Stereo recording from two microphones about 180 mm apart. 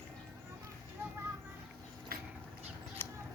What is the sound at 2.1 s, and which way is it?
Dog, 55° right (ahead or behind).